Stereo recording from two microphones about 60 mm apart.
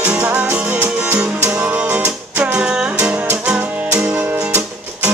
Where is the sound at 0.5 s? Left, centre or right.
Right.